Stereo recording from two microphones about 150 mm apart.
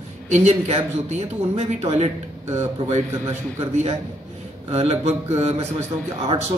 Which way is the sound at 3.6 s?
45° right (ahead or behind).